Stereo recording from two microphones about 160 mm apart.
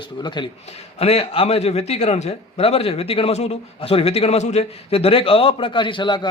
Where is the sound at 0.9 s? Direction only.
40° left (ahead or behind).